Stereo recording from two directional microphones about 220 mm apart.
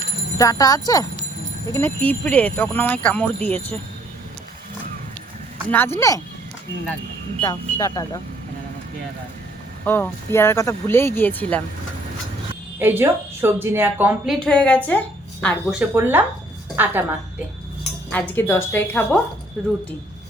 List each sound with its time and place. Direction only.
0.3 s speech: 15° left (ahead or behind)
5.7 s speech: 10° left (ahead or behind)
7.4 s speech: 15° left (ahead or behind)
9.8 s speech: 10° left (ahead or behind)
12.8 s a woman's voice: 10° right (ahead or behind)
14.3 s a woman's voice: 5° left (ahead or behind)
15.8 s a woman's voice: 10° right (ahead or behind)
18.1 s speech: 10° left (ahead or behind)